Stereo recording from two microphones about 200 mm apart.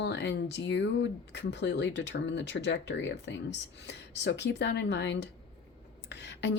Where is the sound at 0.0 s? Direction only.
60° left (ahead or behind).